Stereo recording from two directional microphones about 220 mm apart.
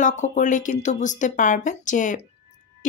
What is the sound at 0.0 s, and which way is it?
Speech, 35° left (ahead or behind).